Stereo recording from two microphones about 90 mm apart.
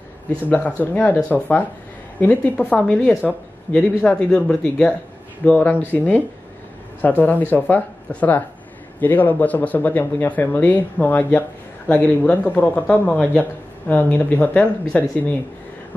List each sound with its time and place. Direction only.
0.5 s speech: 15° left (ahead or behind)